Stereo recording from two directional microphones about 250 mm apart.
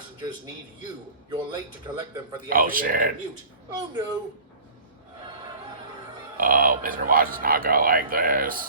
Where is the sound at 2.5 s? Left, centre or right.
Right.